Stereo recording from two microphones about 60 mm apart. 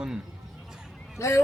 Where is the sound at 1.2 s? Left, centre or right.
Left.